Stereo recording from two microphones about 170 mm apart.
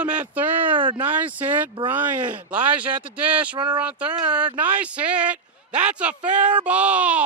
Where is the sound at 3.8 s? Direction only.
10° right (ahead or behind).